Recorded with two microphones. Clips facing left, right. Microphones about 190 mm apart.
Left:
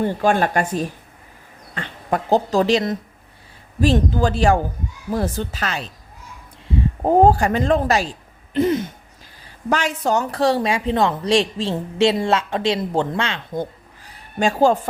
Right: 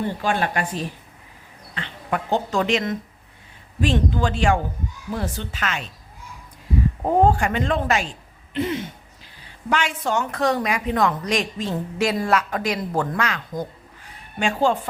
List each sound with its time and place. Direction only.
0.0 s speech: 45° left (ahead or behind)
7.0 s speech: 35° left (ahead or behind)